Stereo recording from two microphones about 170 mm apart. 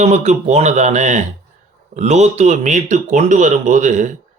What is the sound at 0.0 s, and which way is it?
Speech, 40° right (ahead or behind).